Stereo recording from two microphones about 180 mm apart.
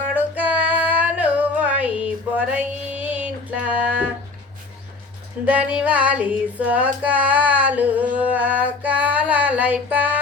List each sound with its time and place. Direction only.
0.1 s female singing: 10° right (ahead or behind)
2.0 s a sound: 5° right (ahead or behind)
5.5 s female singing: 5° right (ahead or behind)